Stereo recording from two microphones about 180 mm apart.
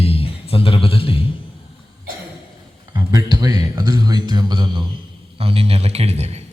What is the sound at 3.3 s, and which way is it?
A man's voice, 20° right (ahead or behind).